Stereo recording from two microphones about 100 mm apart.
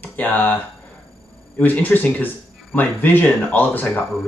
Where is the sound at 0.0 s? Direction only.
15° left (ahead or behind).